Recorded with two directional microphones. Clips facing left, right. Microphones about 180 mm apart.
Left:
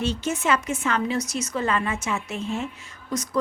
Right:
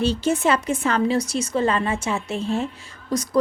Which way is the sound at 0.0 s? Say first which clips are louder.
Right 5 dB; 35° right (ahead or behind).